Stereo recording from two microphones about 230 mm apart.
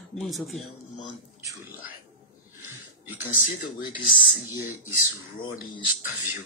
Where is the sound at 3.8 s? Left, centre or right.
Left.